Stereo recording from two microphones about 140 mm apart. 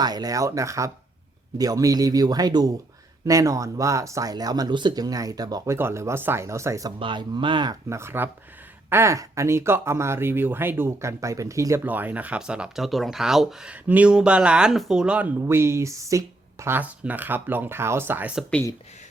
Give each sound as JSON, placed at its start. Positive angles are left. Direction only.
{"t": 0.0, "sound": "speech", "side_deg": -30}
{"t": 7.0, "sound": "speech", "side_deg": -35}
{"t": 15.4, "sound": "speech", "side_deg": -20}